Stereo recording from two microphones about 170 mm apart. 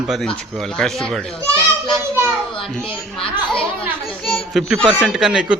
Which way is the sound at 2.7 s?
5° left (ahead or behind).